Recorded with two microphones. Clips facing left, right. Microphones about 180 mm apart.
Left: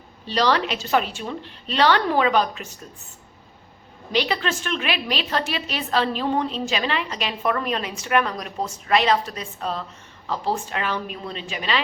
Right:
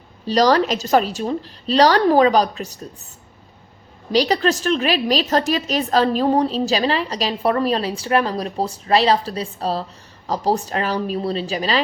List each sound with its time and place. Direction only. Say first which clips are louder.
0.3 s a woman's voice: right 6 dB; 40° right (ahead or behind)
4.1 s a woman's voice: right 6 dB; 40° right (ahead or behind)